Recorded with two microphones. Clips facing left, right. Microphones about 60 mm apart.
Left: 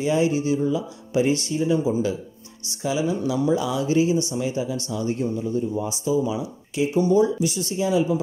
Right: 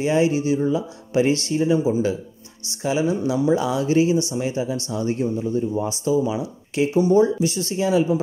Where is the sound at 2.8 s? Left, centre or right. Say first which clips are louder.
Right 2 dB; right.